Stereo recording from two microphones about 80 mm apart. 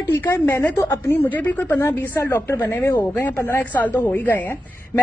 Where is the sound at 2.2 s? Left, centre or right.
Left.